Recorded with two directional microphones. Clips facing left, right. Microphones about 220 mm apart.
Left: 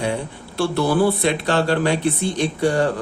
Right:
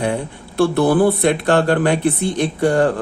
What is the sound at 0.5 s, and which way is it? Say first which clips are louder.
Speech: right 5 dB; 55° right (ahead or behind).